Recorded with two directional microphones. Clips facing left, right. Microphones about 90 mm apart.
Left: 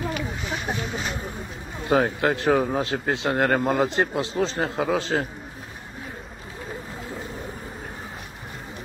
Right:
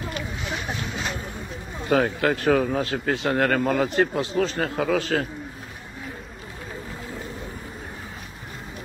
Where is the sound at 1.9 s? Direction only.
25° left (ahead or behind).